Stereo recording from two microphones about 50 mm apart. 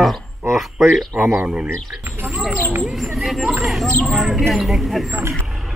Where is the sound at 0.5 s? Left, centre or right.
Centre.